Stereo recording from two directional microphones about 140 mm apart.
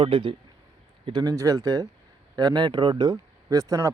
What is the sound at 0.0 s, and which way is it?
A man's voice, 40° right (ahead or behind).